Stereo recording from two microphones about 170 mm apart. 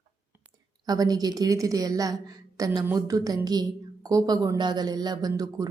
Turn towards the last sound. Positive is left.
turn(degrees=-25)  # may be behind; listen again after turning